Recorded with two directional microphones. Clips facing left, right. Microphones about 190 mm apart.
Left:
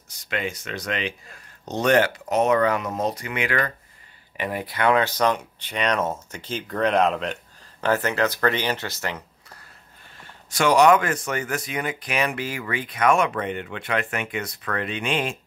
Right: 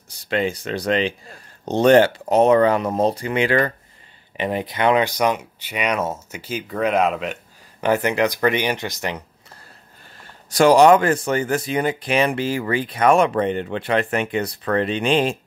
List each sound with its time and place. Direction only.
0.1 s speech: 30° right (ahead or behind); by 7.3 s 5° right (ahead or behind)
7.8 s speech: 15° right (ahead or behind)
10.5 s speech: 35° right (ahead or behind)